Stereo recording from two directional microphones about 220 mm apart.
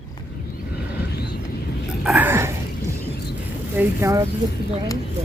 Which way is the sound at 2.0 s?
5° right (ahead or behind).